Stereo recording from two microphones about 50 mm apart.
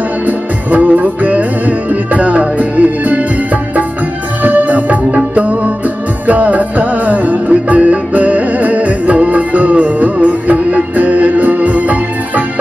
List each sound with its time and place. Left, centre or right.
0.7 s music: right
4.4 s music: right